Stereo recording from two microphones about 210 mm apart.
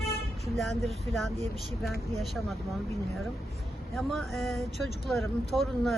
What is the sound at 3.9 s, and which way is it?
Speech, centre (ahead or behind).